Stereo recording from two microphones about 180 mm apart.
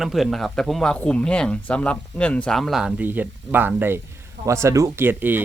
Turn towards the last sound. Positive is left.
turn(degrees=-10)  # may be behind; listen again after turning